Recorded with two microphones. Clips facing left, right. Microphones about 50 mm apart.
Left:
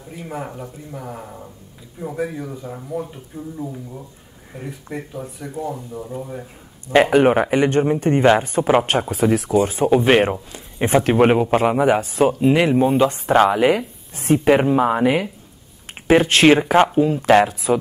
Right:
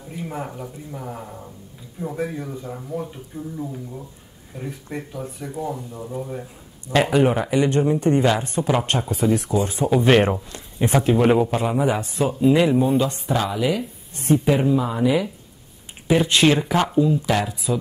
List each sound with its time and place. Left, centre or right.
0.1 s a man's voice: centre
6.4 s speech: left
7.1 s speech: left
9.1 s speech: left
9.5 s speech: left
9.8 s speech: left
10.2 s speech: centre
10.8 s speech: left
11.5 s speech: left
13.1 s speech: left
16.4 s speech: left